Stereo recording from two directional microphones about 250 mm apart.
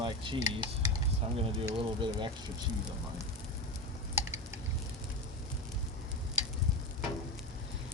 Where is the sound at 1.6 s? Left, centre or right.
Centre.